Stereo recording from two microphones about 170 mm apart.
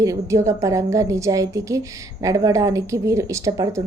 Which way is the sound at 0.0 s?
20° right (ahead or behind).